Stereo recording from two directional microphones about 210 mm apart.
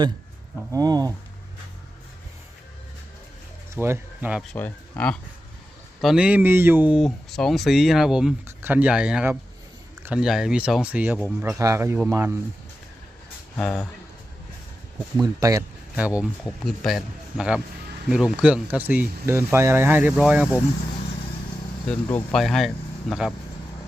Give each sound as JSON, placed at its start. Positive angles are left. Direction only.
{"t": 0.7, "sound": "speech", "side_deg": -15}
{"t": 3.8, "sound": "speech", "side_deg": -10}
{"t": 4.5, "sound": "speech", "side_deg": 10}
{"t": 6.0, "sound": "speech", "side_deg": -5}
{"t": 13.6, "sound": "speech", "side_deg": 5}
{"t": 15.2, "sound": "speech", "side_deg": -15}
{"t": 16.0, "sound": "speech", "side_deg": -5}
{"t": 21.8, "sound": "speech", "side_deg": 5}